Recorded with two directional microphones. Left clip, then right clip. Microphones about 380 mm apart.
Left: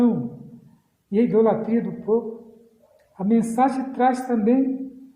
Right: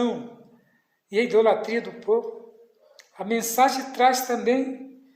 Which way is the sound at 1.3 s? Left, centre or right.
Left.